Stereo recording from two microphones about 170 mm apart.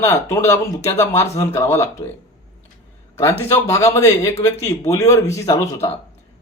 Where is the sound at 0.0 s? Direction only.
20° left (ahead or behind).